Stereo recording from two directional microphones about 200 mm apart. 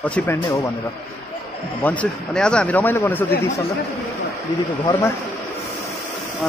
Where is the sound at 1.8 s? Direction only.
10° left (ahead or behind).